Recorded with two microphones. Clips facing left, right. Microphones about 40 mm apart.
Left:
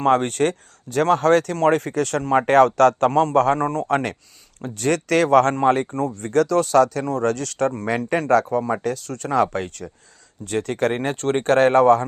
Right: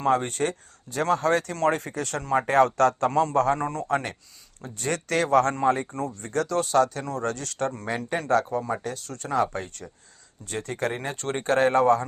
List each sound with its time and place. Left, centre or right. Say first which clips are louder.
0.0 s speech: left 6 dB; left
1.7 s speech: left 8 dB; left
3.1 s speech: left 5 dB; left
3.3 s speech: left 5 dB; left
3.6 s speech: left 6 dB; left
3.8 s speech: left 5 dB; left
5.6 s speech: left 5 dB; left
6.2 s speech: left 8 dB; left
7.0 s speech: left 7 dB; left
7.3 s speech: left 7 dB; left
8.7 s speech: left 7 dB; left
10.4 s speech: left 7 dB; left